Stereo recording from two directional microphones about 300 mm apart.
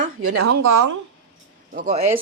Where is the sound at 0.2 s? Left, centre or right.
Right.